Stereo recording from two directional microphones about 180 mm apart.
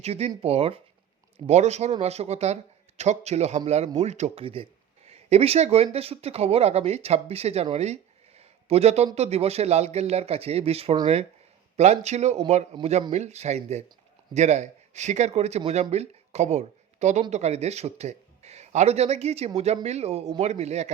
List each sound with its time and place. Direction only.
0.0 s speech: 35° right (ahead or behind)
8.4 s a sound: 35° right (ahead or behind)
9.1 s speech: 35° right (ahead or behind)